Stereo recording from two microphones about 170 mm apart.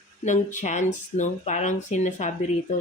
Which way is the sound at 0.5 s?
45° left (ahead or behind).